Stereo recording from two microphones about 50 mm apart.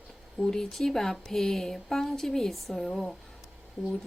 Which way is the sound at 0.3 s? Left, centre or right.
Centre.